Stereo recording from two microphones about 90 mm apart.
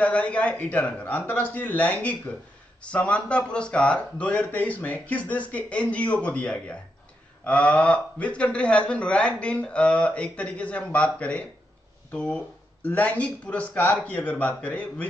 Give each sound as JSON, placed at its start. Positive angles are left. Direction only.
{"t": 0.0, "sound": "speech", "side_deg": 15}